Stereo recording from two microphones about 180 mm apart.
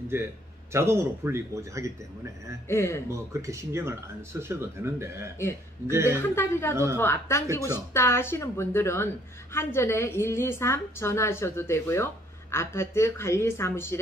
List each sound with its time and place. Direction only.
0.1 s speech: 15° right (ahead or behind)
2.7 s a woman's voice: 15° left (ahead or behind)
3.1 s speech: 15° right (ahead or behind)
6.1 s a woman's voice: 10° left (ahead or behind)
6.7 s speech: 15° right (ahead or behind)
7.0 s a woman's voice: 15° left (ahead or behind)